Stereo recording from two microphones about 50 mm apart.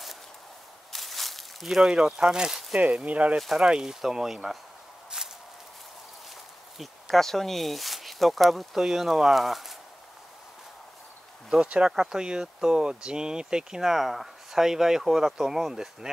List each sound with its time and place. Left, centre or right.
0.9 s a sound: centre
1.9 s speech: centre
3.1 s speech: right
3.3 s speech: centre
5.1 s walk: centre
6.8 s speech: centre
11.5 s speech: right